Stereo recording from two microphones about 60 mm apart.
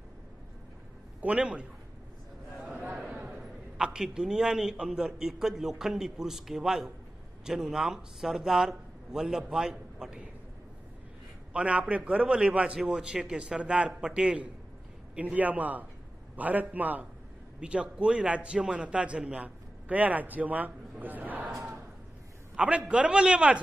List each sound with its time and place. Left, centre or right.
1.2 s a man's voice: right
3.1 s a sound: right
3.3 s a man's voice: centre
11.5 s a man's voice: right
22.6 s a man's voice: right